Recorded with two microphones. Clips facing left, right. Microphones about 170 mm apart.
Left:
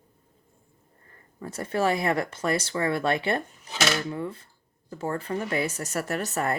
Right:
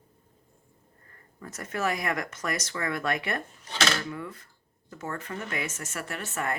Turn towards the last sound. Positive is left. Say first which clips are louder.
# left 5 dB
turn(degrees=40)  # may be behind; listen again after turning